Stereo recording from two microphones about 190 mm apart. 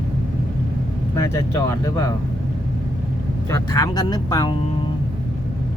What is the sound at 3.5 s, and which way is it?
Speech, 20° left (ahead or behind).